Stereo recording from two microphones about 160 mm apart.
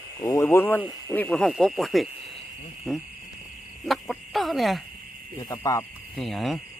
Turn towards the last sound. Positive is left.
turn(degrees=0)  # may be behind; listen again after turning